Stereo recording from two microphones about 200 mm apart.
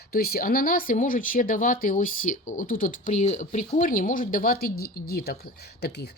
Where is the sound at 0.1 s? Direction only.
50° left (ahead or behind).